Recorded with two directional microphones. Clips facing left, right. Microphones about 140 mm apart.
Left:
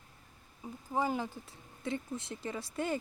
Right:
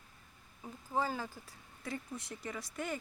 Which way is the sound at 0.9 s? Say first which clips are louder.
Left 3 dB; 15° left (ahead or behind).